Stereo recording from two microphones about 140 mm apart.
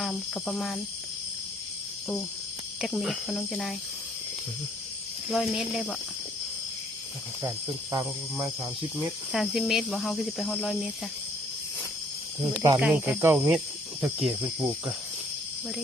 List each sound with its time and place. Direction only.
0.0 s speech: centre (ahead or behind)
2.8 s speech: centre (ahead or behind)
5.3 s speech: centre (ahead or behind)
9.0 s speech: centre (ahead or behind)
12.5 s speech: 30° right (ahead or behind)
12.8 s speech: 10° right (ahead or behind)